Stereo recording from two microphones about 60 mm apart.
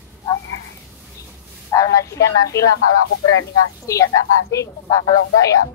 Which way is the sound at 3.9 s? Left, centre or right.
Left.